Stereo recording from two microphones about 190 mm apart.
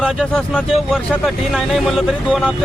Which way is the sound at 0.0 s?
5° left (ahead or behind).